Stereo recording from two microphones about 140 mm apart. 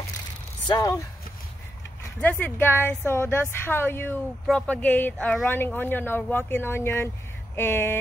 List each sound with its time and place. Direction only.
0.7 s speech: 25° left (ahead or behind)
2.1 s speech: 10° left (ahead or behind)